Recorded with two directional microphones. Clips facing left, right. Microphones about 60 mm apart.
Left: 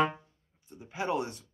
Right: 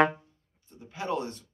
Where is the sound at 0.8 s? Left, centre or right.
Centre.